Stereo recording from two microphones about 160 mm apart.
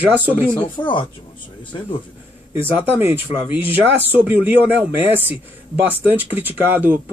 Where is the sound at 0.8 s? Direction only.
25° left (ahead or behind).